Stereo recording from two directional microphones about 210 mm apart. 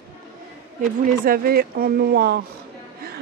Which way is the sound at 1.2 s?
45° right (ahead or behind).